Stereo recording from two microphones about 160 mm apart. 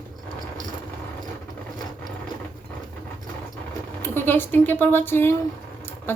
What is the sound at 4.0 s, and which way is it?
Speech, 15° left (ahead or behind).